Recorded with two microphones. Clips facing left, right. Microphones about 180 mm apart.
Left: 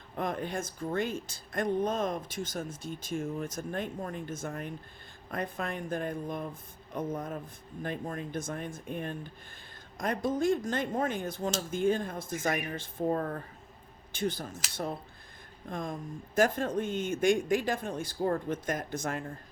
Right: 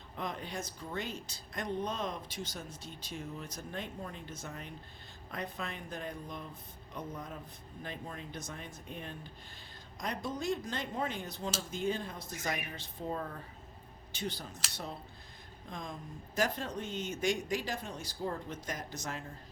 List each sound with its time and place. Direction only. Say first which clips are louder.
0.2 s speech: left 6 dB; 50° left (ahead or behind)
15.7 s speech: left 7 dB; 55° left (ahead or behind)